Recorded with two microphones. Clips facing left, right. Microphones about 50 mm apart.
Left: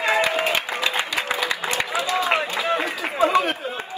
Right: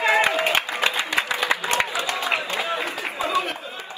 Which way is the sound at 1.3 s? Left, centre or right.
Right.